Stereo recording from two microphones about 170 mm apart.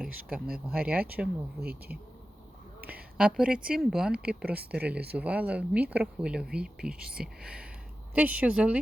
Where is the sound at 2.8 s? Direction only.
65° right (ahead or behind).